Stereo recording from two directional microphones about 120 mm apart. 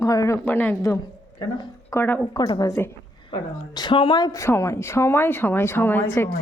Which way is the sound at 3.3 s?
40° left (ahead or behind).